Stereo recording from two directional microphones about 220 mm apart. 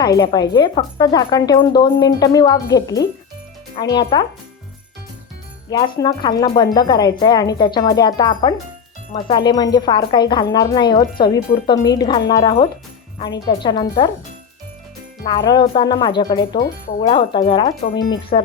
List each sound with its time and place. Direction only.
0.0 s speech: 20° left (ahead or behind)
5.7 s speech: 15° left (ahead or behind)
15.2 s speech: 20° left (ahead or behind)
16.5 s speech: 35° left (ahead or behind)
17.0 s speech: 20° left (ahead or behind)